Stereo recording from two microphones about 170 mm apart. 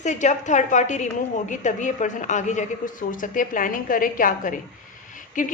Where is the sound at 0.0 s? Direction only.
45° left (ahead or behind).